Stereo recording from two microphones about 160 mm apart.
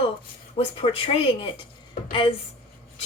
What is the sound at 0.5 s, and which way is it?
Speech, 35° left (ahead or behind).